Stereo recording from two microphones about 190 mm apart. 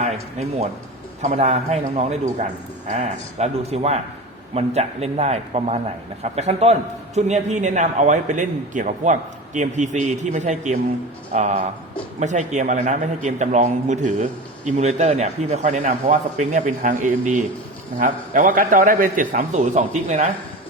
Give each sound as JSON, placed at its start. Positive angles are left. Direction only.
{"t": 0.0, "sound": "a man's voice", "side_deg": -35}